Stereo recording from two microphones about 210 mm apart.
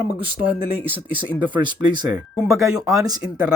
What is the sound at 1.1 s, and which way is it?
Speech, 20° right (ahead or behind).